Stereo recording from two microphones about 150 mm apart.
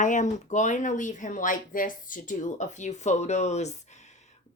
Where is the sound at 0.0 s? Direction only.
55° left (ahead or behind).